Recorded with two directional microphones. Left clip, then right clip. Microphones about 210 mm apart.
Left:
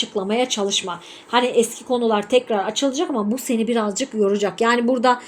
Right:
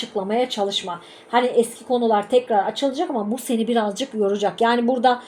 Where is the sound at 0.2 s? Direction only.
25° left (ahead or behind).